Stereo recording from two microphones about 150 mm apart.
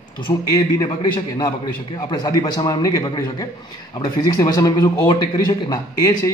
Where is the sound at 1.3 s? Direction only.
25° left (ahead or behind).